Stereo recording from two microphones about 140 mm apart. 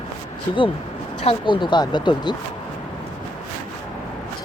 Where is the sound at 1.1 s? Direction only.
40° left (ahead or behind).